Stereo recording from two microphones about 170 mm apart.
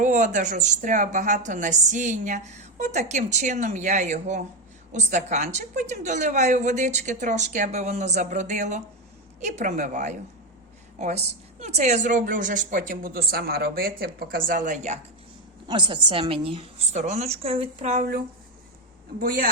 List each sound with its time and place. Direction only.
0.0 s a woman's voice: 45° right (ahead or behind)
15.6 s a woman's voice: 30° right (ahead or behind)
19.2 s speech: 55° right (ahead or behind)